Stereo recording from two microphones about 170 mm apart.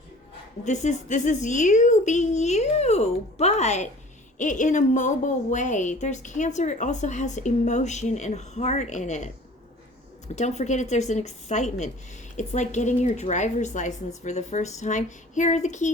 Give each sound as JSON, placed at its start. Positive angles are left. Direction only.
{"t": 0.6, "sound": "a woman's voice", "side_deg": 45}
{"t": 10.3, "sound": "a woman's voice", "side_deg": 40}